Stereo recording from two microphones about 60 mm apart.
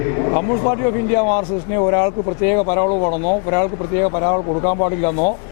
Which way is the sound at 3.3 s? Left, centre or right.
Left.